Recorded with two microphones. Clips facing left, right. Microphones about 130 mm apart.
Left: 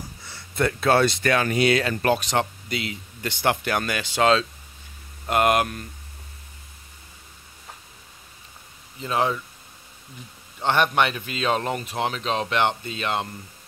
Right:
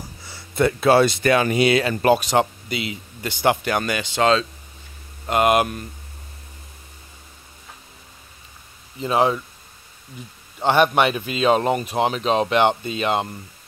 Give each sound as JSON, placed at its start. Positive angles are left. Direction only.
{"t": 0.2, "sound": "speech", "side_deg": -5}
{"t": 9.0, "sound": "speech", "side_deg": -20}
{"t": 10.6, "sound": "speech", "side_deg": -5}